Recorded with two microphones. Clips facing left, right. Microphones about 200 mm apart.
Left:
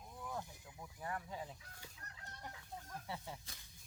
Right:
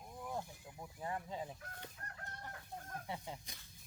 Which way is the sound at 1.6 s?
55° right (ahead or behind).